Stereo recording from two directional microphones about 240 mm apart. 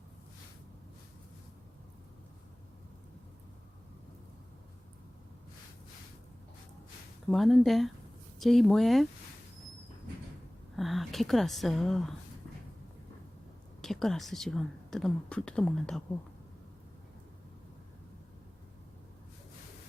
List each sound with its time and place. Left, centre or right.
7.3 s speech: centre
10.8 s speech: centre
13.8 s speech: centre